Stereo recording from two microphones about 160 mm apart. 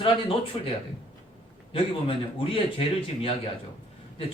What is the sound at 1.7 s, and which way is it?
A man's voice, 35° left (ahead or behind).